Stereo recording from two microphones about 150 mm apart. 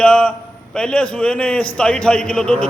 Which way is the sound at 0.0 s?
5° left (ahead or behind).